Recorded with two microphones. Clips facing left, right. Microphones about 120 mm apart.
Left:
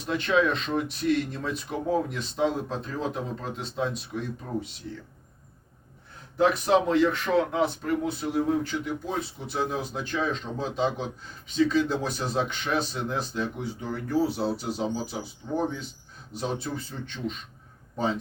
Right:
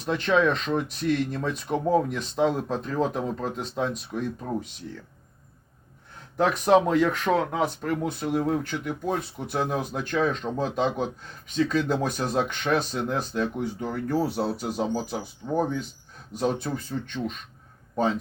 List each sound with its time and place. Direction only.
0.0 s speech: 45° right (ahead or behind)
6.3 s speech: 45° right (ahead or behind)